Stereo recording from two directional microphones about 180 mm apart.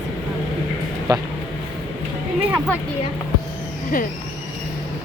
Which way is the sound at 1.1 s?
20° right (ahead or behind).